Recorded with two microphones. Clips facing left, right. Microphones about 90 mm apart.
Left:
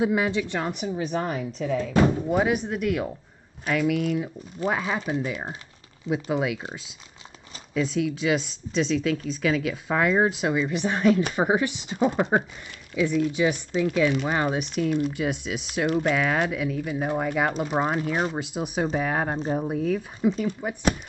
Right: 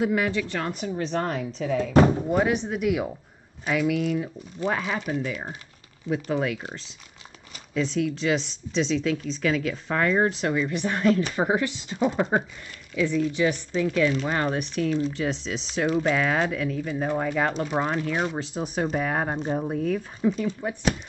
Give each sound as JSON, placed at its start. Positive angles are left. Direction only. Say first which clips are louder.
{"t": 0.0, "sound": "a woman's voice", "louder": "left 1 dB", "side_deg": 20}
{"t": 18.9, "sound": "speech", "louder": "even", "side_deg": 0}